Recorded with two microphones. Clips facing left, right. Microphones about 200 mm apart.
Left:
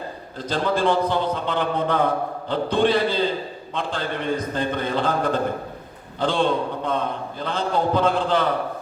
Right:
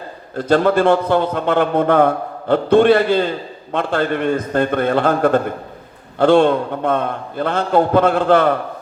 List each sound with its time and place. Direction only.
0.3 s a man's voice: 55° right (ahead or behind)